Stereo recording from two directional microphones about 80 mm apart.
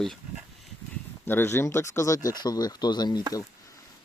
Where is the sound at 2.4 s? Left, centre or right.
Left.